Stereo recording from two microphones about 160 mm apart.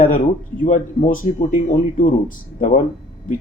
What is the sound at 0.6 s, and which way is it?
Speech, 55° left (ahead or behind).